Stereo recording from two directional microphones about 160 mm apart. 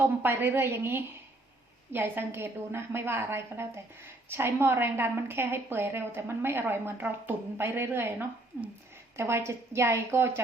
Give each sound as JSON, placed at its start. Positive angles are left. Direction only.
{"t": 0.0, "sound": "a woman's voice", "side_deg": -15}
{"t": 9.1, "sound": "a woman's voice", "side_deg": -15}